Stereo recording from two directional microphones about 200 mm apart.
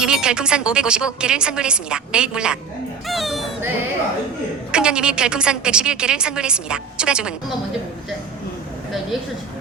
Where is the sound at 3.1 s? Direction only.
Centre (ahead or behind).